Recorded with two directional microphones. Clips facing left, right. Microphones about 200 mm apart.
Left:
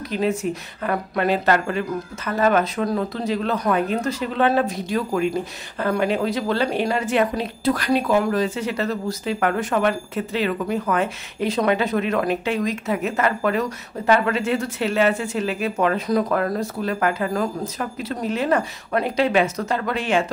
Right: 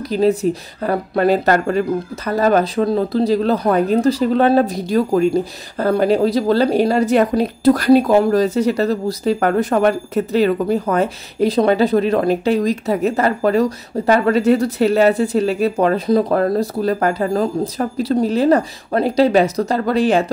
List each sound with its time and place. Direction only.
0.1 s speech: 35° right (ahead or behind)